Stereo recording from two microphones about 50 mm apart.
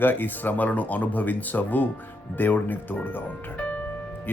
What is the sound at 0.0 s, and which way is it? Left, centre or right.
A man's voice, left.